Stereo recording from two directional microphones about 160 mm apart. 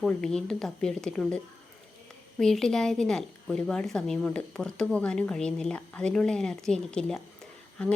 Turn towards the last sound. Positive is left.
turn(degrees=5)  # may be behind; listen again after turning